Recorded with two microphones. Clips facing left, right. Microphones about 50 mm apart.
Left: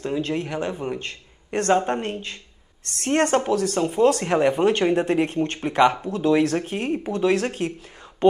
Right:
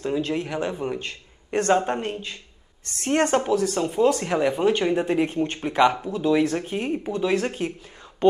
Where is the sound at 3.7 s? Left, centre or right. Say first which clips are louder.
Left 2 dB; centre.